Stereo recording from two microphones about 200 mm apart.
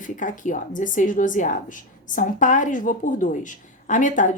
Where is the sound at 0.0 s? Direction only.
40° left (ahead or behind).